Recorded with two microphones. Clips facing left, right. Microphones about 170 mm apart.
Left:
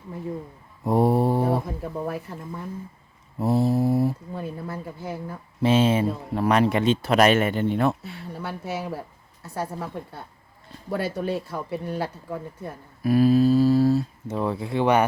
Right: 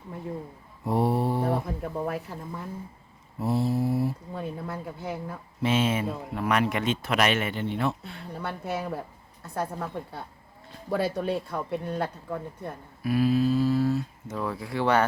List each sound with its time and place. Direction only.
0.9 s mantra: 45° left (ahead or behind)
1.8 s a woman's voice: centre (ahead or behind)
3.4 s mantra: 45° left (ahead or behind)
4.4 s a woman's voice: centre (ahead or behind)
5.6 s speech: 35° left (ahead or behind); by 7.9 s 50° left (ahead or behind)
8.0 s a woman's voice: 5° left (ahead or behind)
13.0 s speech: 40° left (ahead or behind); by 15.0 s 20° left (ahead or behind)